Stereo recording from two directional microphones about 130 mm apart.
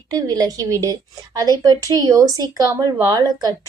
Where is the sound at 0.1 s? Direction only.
30° right (ahead or behind).